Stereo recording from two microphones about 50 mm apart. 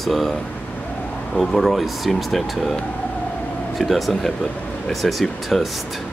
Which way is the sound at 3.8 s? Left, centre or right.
Centre.